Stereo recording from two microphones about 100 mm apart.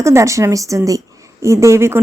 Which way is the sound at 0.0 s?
30° right (ahead or behind).